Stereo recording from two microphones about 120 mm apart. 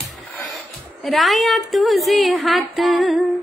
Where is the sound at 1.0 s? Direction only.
Centre (ahead or behind).